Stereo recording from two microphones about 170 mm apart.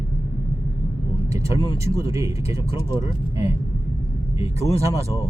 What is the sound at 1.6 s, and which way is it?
Speech, 20° right (ahead or behind).